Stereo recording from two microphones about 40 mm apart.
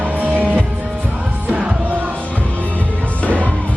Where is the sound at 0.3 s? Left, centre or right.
Right.